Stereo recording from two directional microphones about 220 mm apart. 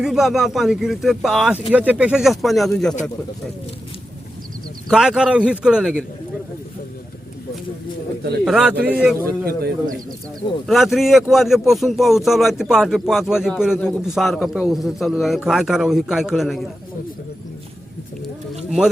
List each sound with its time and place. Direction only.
0.0 s speech: centre (ahead or behind)
4.9 s speech: 5° right (ahead or behind)
8.4 s speech: centre (ahead or behind)
9.2 s a man's voice: 45° right (ahead or behind)
10.7 s speech: centre (ahead or behind)
18.5 s a sound: centre (ahead or behind)